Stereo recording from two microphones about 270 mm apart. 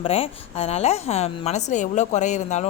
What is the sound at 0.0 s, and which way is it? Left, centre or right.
Speech, left.